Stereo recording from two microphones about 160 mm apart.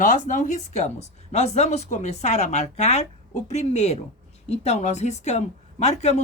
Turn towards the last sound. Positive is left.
turn(degrees=45)  # may be behind; listen again after turning